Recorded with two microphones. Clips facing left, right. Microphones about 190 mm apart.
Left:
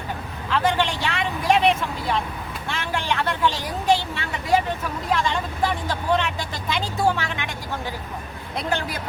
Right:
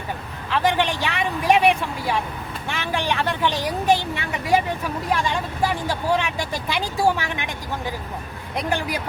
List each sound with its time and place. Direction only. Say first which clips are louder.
0.5 s speech: right 1 dB; 20° right (ahead or behind)
5.6 s speech: right 1 dB; 10° right (ahead or behind)